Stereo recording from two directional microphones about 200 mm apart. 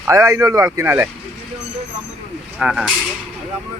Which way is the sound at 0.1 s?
15° right (ahead or behind).